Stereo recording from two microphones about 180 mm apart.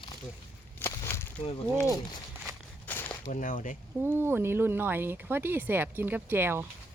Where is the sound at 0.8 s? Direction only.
15° left (ahead or behind).